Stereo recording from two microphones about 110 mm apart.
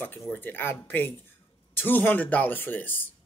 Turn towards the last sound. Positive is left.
turn(degrees=15)  # may be behind; listen again after turning